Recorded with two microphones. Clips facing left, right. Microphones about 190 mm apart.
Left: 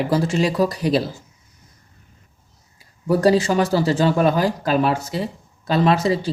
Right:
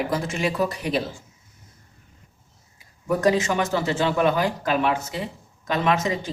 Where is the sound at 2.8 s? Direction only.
35° left (ahead or behind).